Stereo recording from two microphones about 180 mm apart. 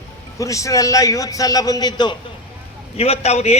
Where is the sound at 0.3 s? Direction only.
15° left (ahead or behind).